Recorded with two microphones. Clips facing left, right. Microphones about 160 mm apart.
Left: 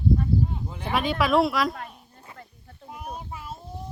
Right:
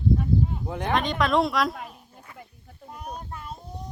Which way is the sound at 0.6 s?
65° right (ahead or behind).